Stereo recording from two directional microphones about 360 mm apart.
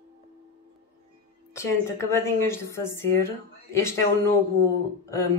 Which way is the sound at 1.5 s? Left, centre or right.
Centre.